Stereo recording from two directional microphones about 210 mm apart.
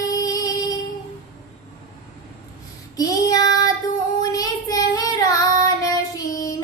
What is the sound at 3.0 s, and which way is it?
Child singing, 15° left (ahead or behind).